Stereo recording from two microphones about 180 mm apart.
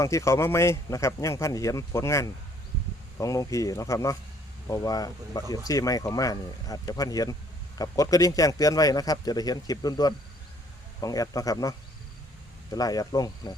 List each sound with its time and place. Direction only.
0.0 s speech: 15° left (ahead or behind)
12.7 s speech: 20° left (ahead or behind)